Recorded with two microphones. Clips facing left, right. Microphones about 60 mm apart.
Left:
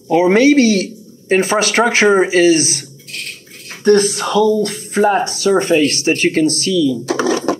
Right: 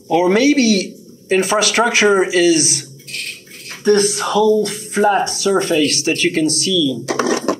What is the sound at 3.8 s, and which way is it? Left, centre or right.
A man's voice, left.